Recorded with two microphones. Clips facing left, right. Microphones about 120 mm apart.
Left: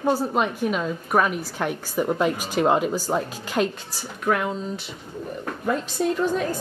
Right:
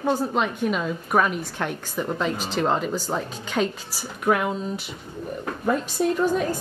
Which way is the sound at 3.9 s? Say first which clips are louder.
Right 1 dB; 10° right (ahead or behind).